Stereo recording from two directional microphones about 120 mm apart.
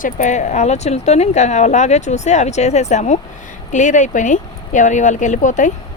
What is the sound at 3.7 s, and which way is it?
Speech, 90° left.